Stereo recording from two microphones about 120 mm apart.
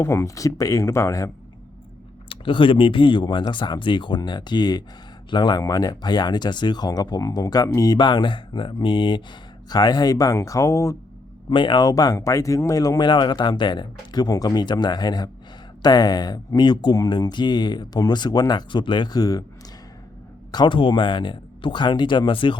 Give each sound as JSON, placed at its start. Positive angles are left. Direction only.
{"t": 0.0, "sound": "speech", "side_deg": 25}
{"t": 2.3, "sound": "speech", "side_deg": 45}
{"t": 11.4, "sound": "speech", "side_deg": 40}
{"t": 20.5, "sound": "speech", "side_deg": 40}